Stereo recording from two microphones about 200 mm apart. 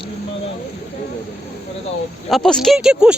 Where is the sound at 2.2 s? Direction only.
5° left (ahead or behind).